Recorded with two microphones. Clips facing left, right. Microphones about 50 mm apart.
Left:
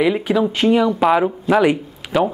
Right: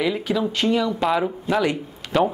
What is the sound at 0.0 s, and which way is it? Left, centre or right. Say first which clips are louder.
Speech: left 6 dB; centre.